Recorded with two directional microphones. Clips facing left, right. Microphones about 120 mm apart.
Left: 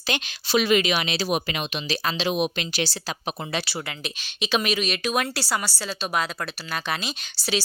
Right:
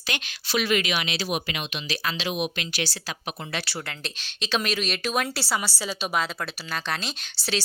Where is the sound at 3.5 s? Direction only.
10° left (ahead or behind).